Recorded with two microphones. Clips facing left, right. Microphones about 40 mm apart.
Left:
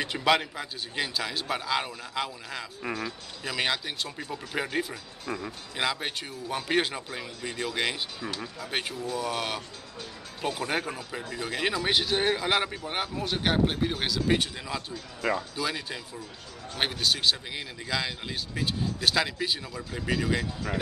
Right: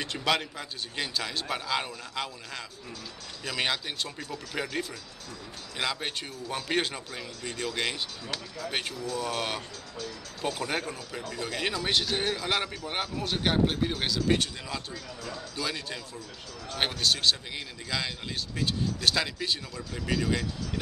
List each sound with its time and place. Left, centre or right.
0.0 s a man's voice: centre
4.2 s speech: centre
5.2 s speech: left
5.8 s a man's voice: centre
8.9 s speech: left
9.2 s a man's voice: centre
10.9 s a man's voice: centre